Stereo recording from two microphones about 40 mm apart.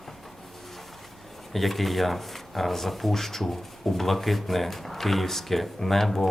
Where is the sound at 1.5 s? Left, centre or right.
Centre.